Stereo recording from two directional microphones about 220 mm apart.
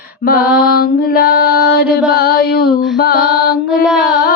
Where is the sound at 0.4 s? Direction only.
5° right (ahead or behind).